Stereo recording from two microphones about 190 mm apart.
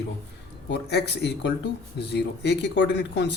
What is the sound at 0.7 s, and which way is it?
Speech, 60° left (ahead or behind).